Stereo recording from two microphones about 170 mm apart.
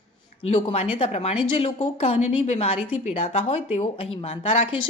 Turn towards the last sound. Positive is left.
turn(degrees=35)  # may be behind; listen again after turning